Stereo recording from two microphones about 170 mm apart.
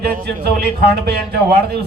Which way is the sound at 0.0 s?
65° right (ahead or behind).